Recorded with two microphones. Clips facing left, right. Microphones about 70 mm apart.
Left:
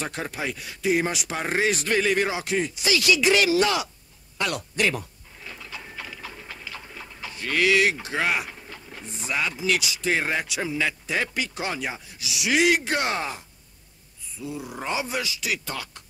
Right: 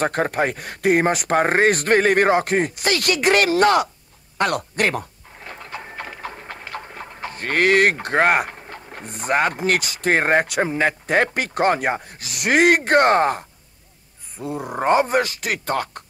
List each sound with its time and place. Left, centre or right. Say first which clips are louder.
0.0 s speech: right 10 dB; right
4.4 s a sound: right 5 dB; right
8.5 s speech: right 5 dB; right